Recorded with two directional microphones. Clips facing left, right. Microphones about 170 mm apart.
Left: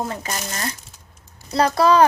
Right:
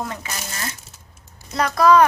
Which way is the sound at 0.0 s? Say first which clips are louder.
Left 3 dB; 35° left (ahead or behind).